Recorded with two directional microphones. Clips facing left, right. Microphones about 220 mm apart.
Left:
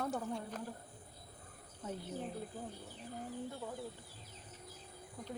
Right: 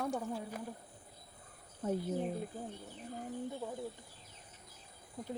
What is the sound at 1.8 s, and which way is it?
Speech, 50° right (ahead or behind).